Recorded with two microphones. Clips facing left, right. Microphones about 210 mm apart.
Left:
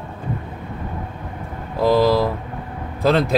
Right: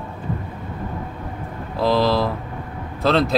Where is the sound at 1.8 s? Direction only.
10° left (ahead or behind).